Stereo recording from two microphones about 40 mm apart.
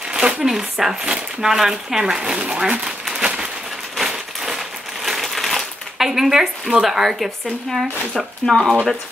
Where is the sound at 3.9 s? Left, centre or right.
Centre.